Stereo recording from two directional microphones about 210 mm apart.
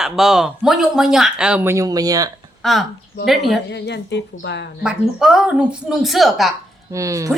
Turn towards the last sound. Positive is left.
turn(degrees=-15)  # may be behind; listen again after turning